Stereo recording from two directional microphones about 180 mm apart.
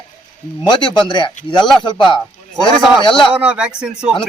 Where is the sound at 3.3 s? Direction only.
5° right (ahead or behind).